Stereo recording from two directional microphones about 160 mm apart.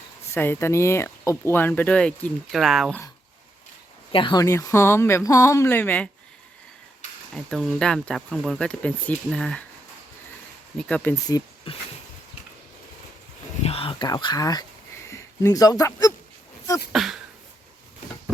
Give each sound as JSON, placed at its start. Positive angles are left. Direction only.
{"t": 0.3, "sound": "speech", "side_deg": 15}
{"t": 4.1, "sound": "speech", "side_deg": 30}
{"t": 7.3, "sound": "speech", "side_deg": 5}
{"t": 10.8, "sound": "speech", "side_deg": 5}
{"t": 11.3, "sound": "speech", "side_deg": 25}
{"t": 13.6, "sound": "a sound", "side_deg": 40}
{"t": 14.1, "sound": "speech", "side_deg": 25}
{"t": 16.9, "sound": "speech", "side_deg": 0}